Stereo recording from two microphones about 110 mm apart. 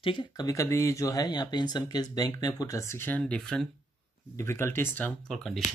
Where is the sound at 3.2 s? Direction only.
5° left (ahead or behind).